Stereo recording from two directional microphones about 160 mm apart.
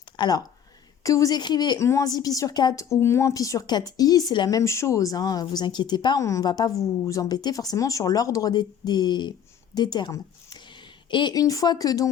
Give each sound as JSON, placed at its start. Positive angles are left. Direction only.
{"t": 0.2, "sound": "a woman's voice", "side_deg": 25}